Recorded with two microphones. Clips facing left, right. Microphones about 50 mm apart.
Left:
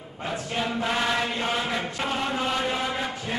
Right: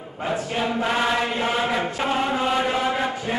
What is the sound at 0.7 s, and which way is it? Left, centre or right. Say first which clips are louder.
Chant: right 3 dB; centre.